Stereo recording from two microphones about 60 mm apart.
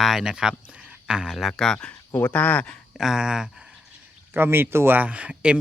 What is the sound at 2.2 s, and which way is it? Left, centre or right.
Speech, left.